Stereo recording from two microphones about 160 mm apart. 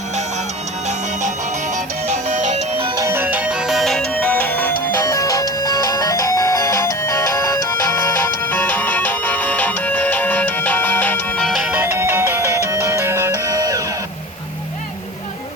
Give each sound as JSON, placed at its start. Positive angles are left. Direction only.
{"t": 2.0, "sound": "music", "side_deg": -45}
{"t": 3.0, "sound": "music", "side_deg": -15}